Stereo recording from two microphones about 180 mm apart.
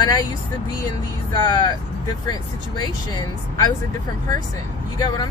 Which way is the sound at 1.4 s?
20° left (ahead or behind).